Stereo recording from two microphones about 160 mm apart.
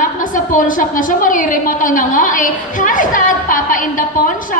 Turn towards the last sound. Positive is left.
turn(degrees=55)  # may be behind; listen again after turning